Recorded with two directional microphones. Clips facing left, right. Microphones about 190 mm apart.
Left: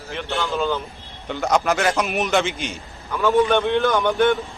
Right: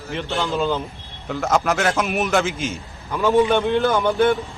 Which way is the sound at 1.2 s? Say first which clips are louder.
Even; centre (ahead or behind).